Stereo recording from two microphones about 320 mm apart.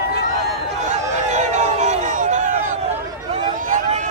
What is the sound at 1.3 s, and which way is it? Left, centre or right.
Music, right.